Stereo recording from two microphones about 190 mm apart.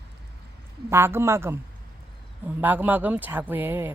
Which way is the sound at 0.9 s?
15° right (ahead or behind).